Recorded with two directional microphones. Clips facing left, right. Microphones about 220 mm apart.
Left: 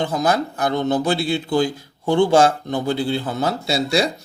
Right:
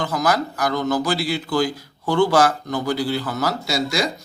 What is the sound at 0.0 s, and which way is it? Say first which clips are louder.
A man's voice: left 2 dB; 25° left (ahead or behind).